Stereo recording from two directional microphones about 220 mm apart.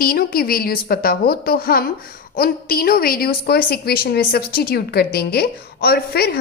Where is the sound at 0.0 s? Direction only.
40° left (ahead or behind).